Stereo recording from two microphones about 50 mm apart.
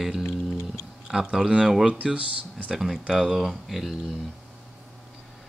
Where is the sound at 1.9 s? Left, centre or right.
Right.